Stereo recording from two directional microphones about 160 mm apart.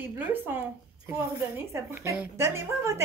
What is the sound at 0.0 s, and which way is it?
A woman's voice, 10° right (ahead or behind).